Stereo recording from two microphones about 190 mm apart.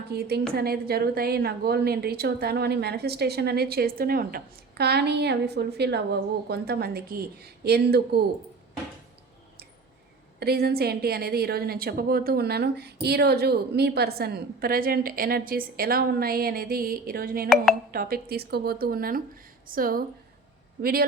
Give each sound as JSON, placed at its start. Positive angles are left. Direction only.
{"t": 0.1, "sound": "a woman's voice", "side_deg": -55}
{"t": 10.4, "sound": "a woman's voice", "side_deg": -55}